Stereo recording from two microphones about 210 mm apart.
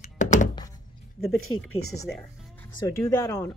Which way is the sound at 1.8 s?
90° left.